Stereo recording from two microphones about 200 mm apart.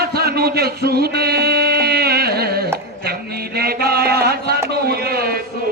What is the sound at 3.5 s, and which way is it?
Mantra, 50° right (ahead or behind).